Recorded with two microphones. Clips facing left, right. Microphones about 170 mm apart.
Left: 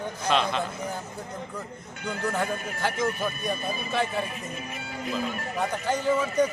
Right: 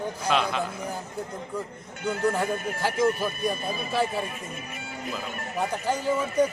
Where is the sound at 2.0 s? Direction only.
5° right (ahead or behind).